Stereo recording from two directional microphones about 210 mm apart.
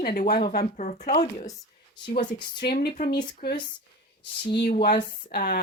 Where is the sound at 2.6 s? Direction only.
45° left (ahead or behind).